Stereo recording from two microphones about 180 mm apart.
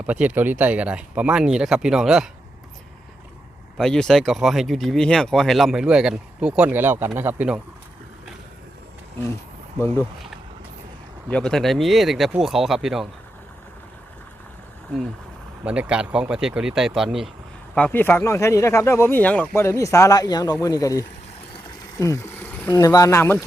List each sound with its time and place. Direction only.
0.1 s speech: 10° right (ahead or behind)
3.8 s speech: 5° left (ahead or behind)
11.3 s speech: 5° left (ahead or behind)
15.6 s speech: 5° right (ahead or behind)
17.7 s speech: 10° left (ahead or behind)
21.9 s a sound: 15° left (ahead or behind)
22.7 s speech: 20° left (ahead or behind)